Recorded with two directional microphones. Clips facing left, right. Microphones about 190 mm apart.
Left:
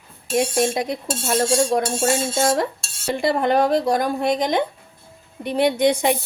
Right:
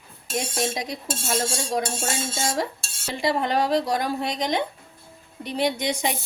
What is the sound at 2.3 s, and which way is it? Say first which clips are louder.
A woman's voice: left 7 dB; 60° left (ahead or behind).